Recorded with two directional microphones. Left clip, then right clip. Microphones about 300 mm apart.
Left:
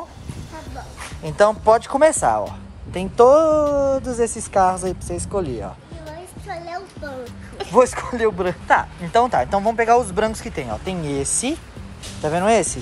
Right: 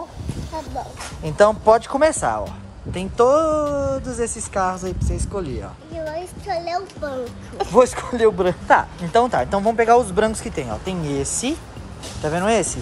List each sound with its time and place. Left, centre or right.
1.2 s speech: centre
6.7 s a sound: centre
7.7 s speech: centre